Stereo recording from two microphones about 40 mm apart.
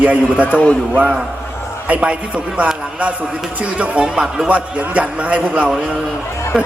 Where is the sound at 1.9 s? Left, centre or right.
Right.